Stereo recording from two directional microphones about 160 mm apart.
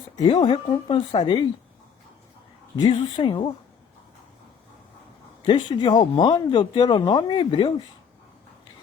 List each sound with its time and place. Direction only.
0.2 s speech: 30° left (ahead or behind)
2.7 s speech: 30° left (ahead or behind)
5.5 s speech: 30° left (ahead or behind)